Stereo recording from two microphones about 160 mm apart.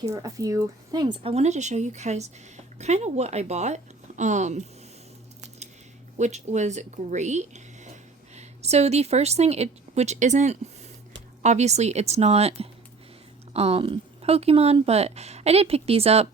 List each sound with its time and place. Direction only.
0.0 s speech: 20° right (ahead or behind); by 4.6 s 45° right (ahead or behind)
6.1 s a woman's voice: 45° right (ahead or behind)